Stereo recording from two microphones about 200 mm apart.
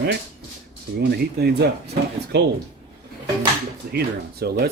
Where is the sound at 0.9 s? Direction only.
55° right (ahead or behind).